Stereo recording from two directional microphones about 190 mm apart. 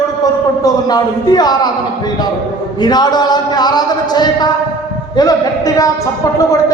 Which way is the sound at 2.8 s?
20° left (ahead or behind).